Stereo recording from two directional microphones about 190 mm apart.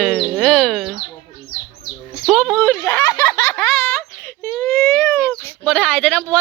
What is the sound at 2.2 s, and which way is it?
Speech, centre (ahead or behind).